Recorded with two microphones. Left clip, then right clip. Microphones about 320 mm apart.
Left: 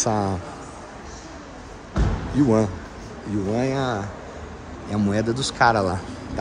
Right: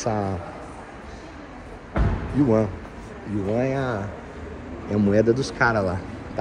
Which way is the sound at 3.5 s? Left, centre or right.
Centre.